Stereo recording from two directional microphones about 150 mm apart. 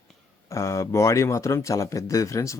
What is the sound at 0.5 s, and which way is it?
Speech, 20° left (ahead or behind).